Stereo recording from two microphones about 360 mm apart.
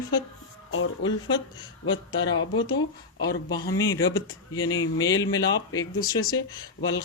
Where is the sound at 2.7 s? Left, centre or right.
Left.